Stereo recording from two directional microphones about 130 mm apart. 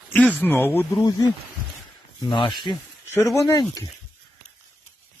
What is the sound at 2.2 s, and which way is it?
Speech, 40° left (ahead or behind).